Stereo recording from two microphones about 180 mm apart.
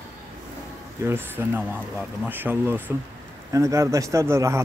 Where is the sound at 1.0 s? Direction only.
10° right (ahead or behind).